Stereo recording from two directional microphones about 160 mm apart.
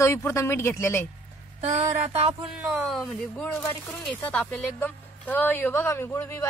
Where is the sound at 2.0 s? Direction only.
40° right (ahead or behind).